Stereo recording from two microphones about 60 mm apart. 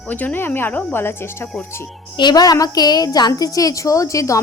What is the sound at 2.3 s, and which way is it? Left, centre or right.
A woman's voice, left.